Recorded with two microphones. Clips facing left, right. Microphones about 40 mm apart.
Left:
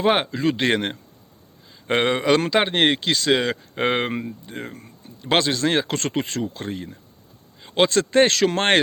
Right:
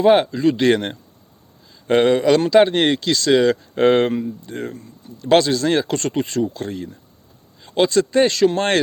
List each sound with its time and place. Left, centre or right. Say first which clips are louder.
0.0 s speech: right 6 dB; left
4.1 s speech: right 5 dB; left
4.4 s speech: right 5 dB; centre
4.7 s speech: right 5 dB; left
5.2 s speech: right 5 dB; left
7.7 s speech: right 2 dB; left